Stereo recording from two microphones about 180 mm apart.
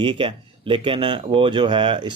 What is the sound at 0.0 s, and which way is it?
Speech, 30° right (ahead or behind).